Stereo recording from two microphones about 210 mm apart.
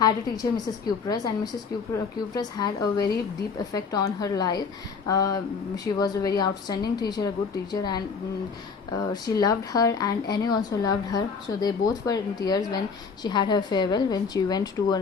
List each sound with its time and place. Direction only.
0.0 s a woman's voice: 20° left (ahead or behind)
2.3 s a woman's voice: 20° left (ahead or behind)